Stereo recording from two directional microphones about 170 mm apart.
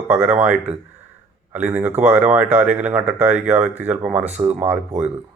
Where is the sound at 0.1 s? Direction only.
5° right (ahead or behind).